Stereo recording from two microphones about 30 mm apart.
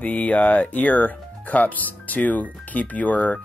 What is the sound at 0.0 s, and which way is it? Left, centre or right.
Speech, left.